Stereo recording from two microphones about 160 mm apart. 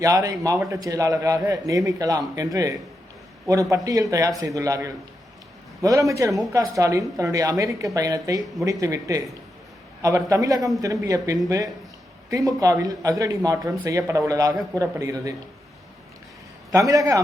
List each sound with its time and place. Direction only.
0.0 s a man's voice: 20° right (ahead or behind)
16.7 s a man's voice: 20° right (ahead or behind)